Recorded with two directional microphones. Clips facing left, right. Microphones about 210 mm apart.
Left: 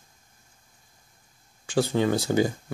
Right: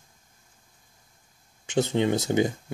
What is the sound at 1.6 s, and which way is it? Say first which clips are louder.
Speech: even; 20° right (ahead or behind).